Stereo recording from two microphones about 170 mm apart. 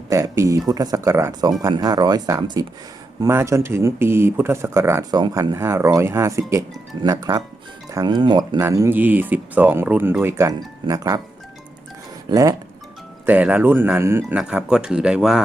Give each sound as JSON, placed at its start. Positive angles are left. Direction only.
{"t": 0.1, "sound": "speech", "side_deg": -20}
{"t": 12.3, "sound": "speech", "side_deg": -20}
{"t": 13.2, "sound": "speech", "side_deg": -10}